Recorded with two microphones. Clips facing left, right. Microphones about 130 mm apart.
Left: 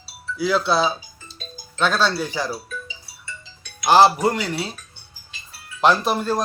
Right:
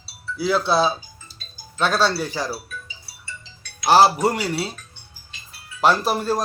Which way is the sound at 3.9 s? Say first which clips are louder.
Left 1 dB; 5° right (ahead or behind).